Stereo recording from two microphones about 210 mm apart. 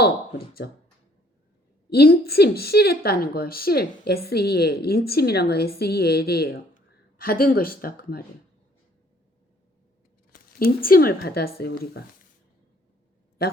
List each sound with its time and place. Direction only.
0.0 s speech: 45° left (ahead or behind)
1.9 s a woman's voice: 50° left (ahead or behind)
10.8 s a woman's voice: 45° left (ahead or behind)